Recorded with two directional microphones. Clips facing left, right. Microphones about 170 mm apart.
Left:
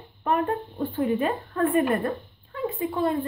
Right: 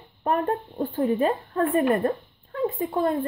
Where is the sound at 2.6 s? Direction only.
50° right (ahead or behind).